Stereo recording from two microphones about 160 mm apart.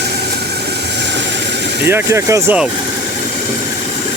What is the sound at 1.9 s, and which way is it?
Speech, 15° right (ahead or behind).